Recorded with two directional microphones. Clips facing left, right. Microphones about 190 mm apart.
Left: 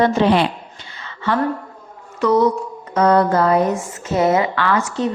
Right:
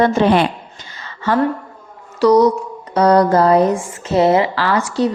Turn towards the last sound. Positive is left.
turn(degrees=-35)  # may be behind; listen again after turning